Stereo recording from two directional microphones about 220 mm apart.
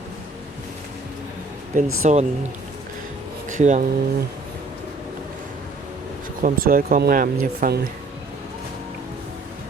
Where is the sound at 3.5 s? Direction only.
35° right (ahead or behind).